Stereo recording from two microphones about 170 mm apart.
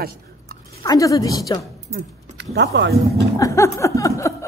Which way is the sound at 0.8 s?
20° left (ahead or behind).